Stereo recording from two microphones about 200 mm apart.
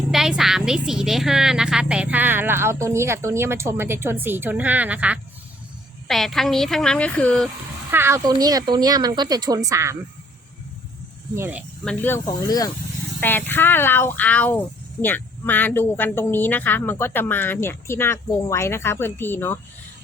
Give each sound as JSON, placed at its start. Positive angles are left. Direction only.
{"t": 0.1, "sound": "a woman's voice", "side_deg": 0}
{"t": 7.9, "sound": "a woman's voice", "side_deg": -10}
{"t": 11.3, "sound": "a woman's voice", "side_deg": -10}
{"t": 11.9, "sound": "speech", "side_deg": 10}